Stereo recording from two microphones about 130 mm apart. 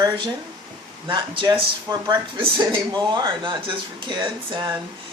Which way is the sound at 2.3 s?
40° right (ahead or behind).